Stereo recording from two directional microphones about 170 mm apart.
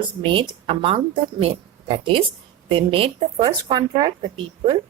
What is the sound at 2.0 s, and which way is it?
Speech, 30° right (ahead or behind).